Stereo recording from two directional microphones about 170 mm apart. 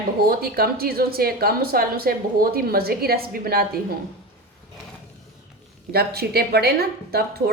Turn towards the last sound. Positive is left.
turn(degrees=-65)  # may be behind; listen again after turning